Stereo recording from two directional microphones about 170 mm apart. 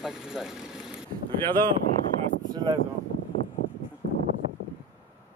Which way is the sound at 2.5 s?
25° right (ahead or behind).